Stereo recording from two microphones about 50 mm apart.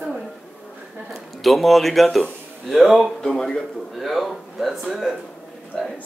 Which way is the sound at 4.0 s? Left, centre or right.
Centre.